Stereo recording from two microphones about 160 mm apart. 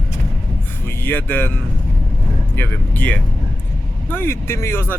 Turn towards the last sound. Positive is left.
turn(degrees=15)  # may be behind; listen again after turning